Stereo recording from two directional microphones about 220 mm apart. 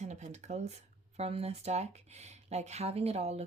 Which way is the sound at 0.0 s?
30° right (ahead or behind).